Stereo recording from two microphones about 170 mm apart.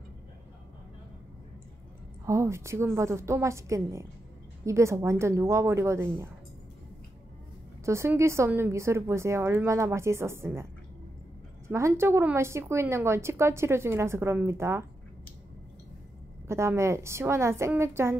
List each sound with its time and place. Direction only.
2.2 s a woman's voice: 15° right (ahead or behind)
7.8 s a woman's voice: 15° right (ahead or behind)
16.4 s a woman's voice: 15° right (ahead or behind)